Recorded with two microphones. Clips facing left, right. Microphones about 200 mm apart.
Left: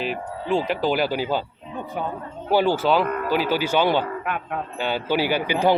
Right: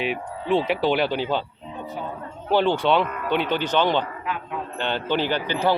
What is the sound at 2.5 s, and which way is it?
Speech, 5° left (ahead or behind).